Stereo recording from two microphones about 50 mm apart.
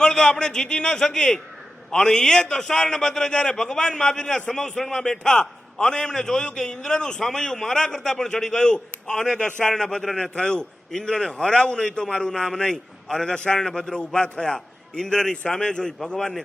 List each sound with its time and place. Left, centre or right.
0.0 s a man's voice: centre